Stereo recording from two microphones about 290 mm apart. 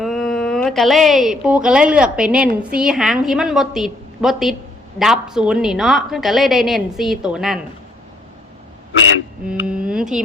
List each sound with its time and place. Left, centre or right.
0.0 s a woman's voice: centre
9.5 s speech: centre